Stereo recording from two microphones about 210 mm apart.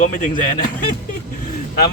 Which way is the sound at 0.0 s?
35° left (ahead or behind).